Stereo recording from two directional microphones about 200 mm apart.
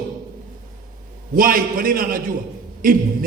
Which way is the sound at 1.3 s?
45° right (ahead or behind).